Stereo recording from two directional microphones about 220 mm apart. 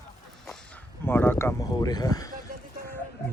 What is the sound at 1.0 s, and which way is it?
Speech, 10° left (ahead or behind).